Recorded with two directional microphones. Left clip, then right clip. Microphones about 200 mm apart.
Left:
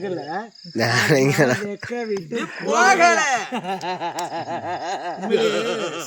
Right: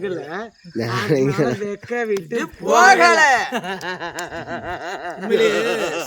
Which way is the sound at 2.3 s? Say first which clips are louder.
Right 5 dB; 25° right (ahead or behind).